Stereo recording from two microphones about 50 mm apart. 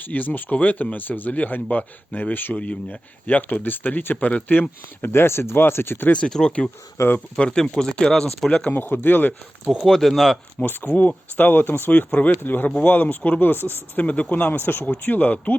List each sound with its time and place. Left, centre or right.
0.0 s speech: left
5.0 s speech: left
6.1 s speech: left
7.0 s speech: left
7.3 s speech: centre
8.7 s speech: left
9.8 s speech: centre
10.6 s speech: left
14.0 s speech: left